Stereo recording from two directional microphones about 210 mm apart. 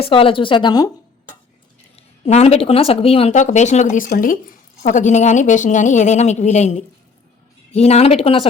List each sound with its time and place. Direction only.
0.0 s speech: 25° left (ahead or behind)
2.0 s speech: 30° left (ahead or behind)